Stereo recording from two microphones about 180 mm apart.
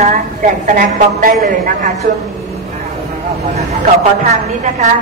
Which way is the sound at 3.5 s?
40° right (ahead or behind).